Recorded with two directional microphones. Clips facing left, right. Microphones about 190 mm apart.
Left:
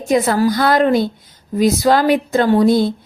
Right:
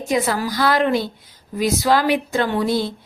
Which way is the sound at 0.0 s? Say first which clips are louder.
Left 6 dB; 45° left (ahead or behind).